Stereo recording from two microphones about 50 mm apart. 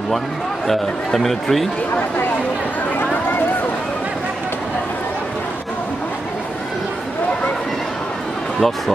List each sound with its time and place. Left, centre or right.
0.7 s speech: centre
8.5 s speech: centre